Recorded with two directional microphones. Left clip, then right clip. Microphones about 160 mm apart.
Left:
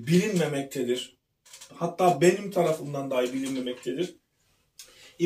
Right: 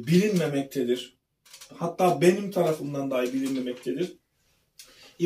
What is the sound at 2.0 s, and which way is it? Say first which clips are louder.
Speech: even; 25° left (ahead or behind).